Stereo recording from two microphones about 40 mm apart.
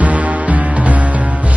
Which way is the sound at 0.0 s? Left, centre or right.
Right.